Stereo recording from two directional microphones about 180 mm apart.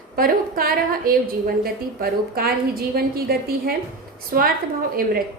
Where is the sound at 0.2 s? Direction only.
55° right (ahead or behind).